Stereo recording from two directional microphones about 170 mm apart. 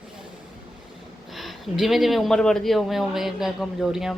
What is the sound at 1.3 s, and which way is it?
Speech, centre (ahead or behind).